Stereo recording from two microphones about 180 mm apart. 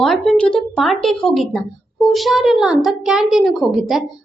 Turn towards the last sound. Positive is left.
turn(degrees=0)  # may be behind; listen again after turning